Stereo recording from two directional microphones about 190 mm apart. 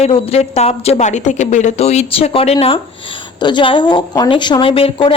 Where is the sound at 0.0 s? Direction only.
35° left (ahead or behind).